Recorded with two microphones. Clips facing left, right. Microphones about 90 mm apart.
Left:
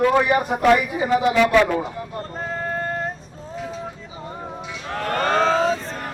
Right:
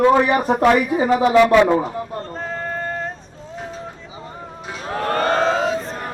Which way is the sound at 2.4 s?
5° left (ahead or behind).